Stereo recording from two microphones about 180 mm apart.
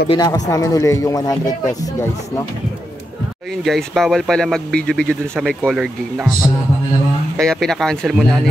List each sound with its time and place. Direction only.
0.1 s a man's voice: 20° left (ahead or behind)
3.6 s speech: centre (ahead or behind)
7.3 s speech: centre (ahead or behind)